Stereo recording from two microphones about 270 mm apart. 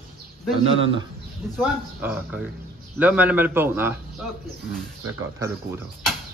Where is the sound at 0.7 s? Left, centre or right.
Right.